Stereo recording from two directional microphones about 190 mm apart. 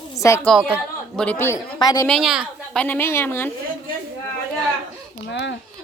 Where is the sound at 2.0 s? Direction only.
Centre (ahead or behind).